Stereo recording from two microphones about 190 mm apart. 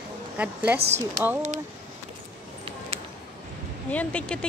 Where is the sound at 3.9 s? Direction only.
5° left (ahead or behind).